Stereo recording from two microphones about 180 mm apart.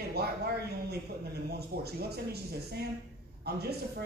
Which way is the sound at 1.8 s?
60° right (ahead or behind).